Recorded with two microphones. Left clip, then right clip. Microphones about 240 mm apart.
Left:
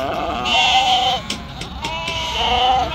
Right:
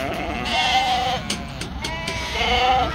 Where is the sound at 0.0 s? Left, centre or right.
Left.